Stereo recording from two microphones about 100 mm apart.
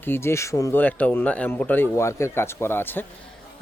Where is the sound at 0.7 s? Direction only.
15° left (ahead or behind).